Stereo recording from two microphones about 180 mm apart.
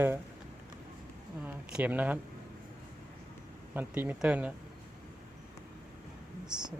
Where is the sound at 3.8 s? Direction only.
10° right (ahead or behind).